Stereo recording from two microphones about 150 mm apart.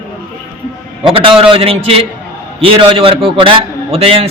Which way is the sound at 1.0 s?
35° right (ahead or behind).